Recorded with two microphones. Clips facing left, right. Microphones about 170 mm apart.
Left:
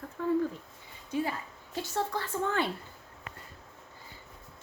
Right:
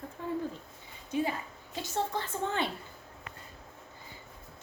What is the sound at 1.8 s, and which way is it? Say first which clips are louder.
Speech: left 1 dB; 20° right (ahead or behind).